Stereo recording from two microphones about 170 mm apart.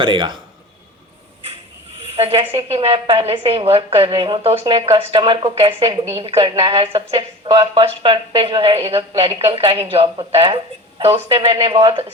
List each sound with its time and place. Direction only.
0.0 s speech: 30° right (ahead or behind)
2.0 s a sound: 35° right (ahead or behind)
2.6 s speech: 35° right (ahead or behind)